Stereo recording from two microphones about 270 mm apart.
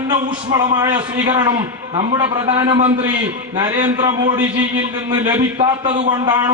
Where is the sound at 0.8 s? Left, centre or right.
Centre.